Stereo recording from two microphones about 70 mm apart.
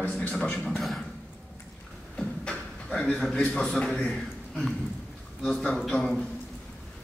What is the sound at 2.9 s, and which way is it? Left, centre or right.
A man's voice, centre.